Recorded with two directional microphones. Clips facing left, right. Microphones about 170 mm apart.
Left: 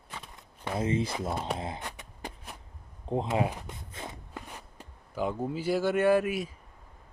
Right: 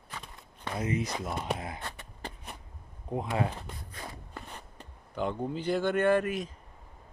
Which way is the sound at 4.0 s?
25° left (ahead or behind).